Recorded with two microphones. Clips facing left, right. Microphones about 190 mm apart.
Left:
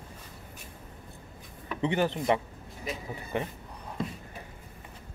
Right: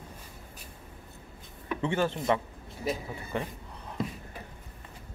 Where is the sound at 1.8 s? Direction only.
15° left (ahead or behind).